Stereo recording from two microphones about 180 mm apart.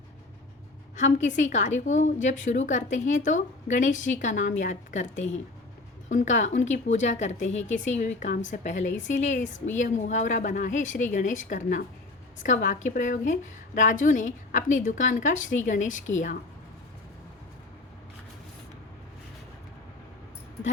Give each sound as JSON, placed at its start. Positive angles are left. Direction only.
{"t": 0.9, "sound": "a woman's voice", "side_deg": 40}